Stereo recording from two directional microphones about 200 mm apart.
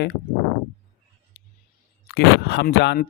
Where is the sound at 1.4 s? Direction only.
55° left (ahead or behind).